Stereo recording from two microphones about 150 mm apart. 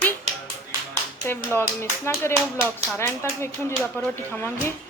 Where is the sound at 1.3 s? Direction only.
15° left (ahead or behind).